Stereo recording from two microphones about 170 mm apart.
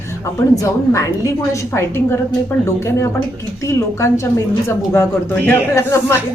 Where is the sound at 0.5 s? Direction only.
20° left (ahead or behind).